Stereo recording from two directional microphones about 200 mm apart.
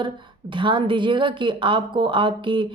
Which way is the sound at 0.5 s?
25° right (ahead or behind).